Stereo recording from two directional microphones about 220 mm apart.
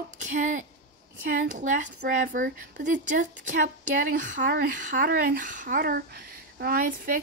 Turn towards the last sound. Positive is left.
turn(degrees=-40)  # may be behind; listen again after turning